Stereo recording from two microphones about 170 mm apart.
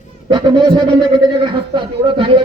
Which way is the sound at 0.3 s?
25° right (ahead or behind).